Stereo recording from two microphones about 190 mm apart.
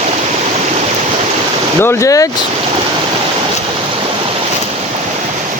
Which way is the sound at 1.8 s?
15° left (ahead or behind).